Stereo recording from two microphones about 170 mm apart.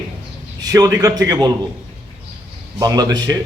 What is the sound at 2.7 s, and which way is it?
Speech, 20° right (ahead or behind).